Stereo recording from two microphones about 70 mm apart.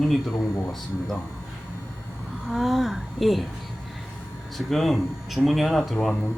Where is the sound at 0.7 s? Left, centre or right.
Centre.